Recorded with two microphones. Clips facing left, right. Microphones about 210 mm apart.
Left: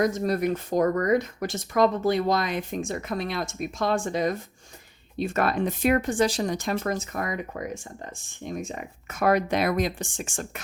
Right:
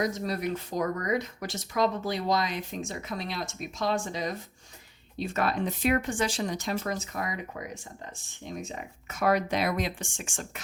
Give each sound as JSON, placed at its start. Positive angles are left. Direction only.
{"t": 0.0, "sound": "speech", "side_deg": 50}